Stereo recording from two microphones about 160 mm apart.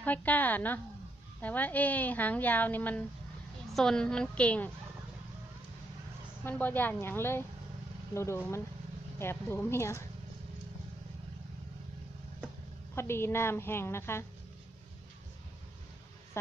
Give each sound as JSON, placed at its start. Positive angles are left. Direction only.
{"t": 0.0, "sound": "a woman's voice", "side_deg": 10}
{"t": 6.4, "sound": "a woman's voice", "side_deg": 10}
{"t": 12.9, "sound": "a woman's voice", "side_deg": 15}